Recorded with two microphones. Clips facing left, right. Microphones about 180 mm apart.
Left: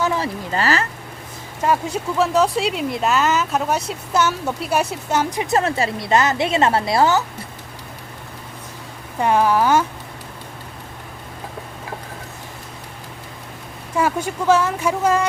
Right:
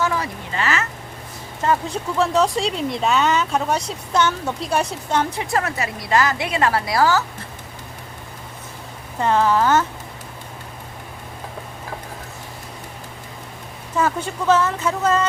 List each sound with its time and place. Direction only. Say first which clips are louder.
0.0 s a sound: left 1 dB; 25° left (ahead or behind)
0.5 s speech: left 3 dB; 35° left (ahead or behind)
1.6 s speech: left 1 dB; 10° left (ahead or behind)
5.4 s a woman's voice: left 4 dB; 25° left (ahead or behind)
9.2 s speech: left 1 dB; 10° left (ahead or behind)
13.9 s speech: left 1 dB; 10° left (ahead or behind)